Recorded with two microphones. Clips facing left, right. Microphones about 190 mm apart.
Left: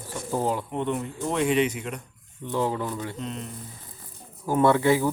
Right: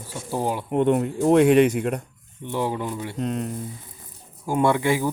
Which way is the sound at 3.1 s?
50° right (ahead or behind).